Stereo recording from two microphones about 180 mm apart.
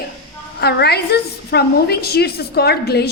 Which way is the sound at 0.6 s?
65° left (ahead or behind).